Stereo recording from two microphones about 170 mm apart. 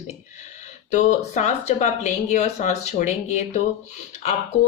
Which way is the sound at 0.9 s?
45° left (ahead or behind).